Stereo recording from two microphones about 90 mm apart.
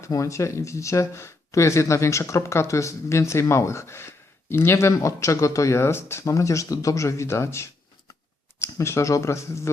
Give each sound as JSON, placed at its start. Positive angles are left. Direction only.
{"t": 0.0, "sound": "speech", "side_deg": 35}